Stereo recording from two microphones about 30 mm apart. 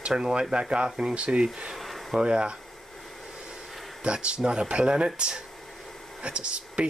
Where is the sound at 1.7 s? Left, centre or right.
Centre.